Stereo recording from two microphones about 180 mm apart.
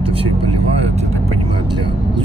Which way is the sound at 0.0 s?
30° right (ahead or behind).